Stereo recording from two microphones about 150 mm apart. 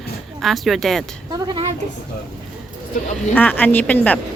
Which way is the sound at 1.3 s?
30° right (ahead or behind).